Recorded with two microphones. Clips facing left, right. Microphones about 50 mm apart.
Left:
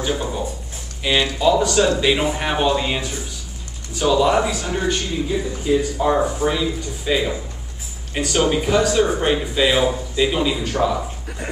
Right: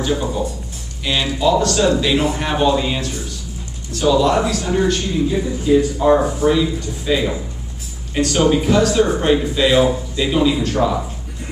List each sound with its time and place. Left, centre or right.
0.0 s a man's voice: centre
6.0 s speech: centre
6.4 s a man's voice: centre